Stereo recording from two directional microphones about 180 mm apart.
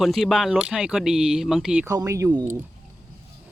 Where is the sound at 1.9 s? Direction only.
15° right (ahead or behind).